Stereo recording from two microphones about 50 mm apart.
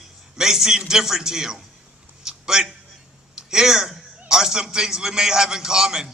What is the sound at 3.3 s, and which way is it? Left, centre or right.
A man's voice, centre.